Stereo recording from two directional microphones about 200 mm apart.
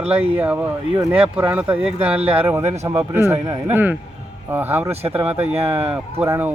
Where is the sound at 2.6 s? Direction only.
35° right (ahead or behind).